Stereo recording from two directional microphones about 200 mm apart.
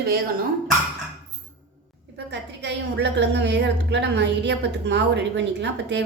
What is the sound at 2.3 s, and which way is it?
A woman's voice, 60° right (ahead or behind).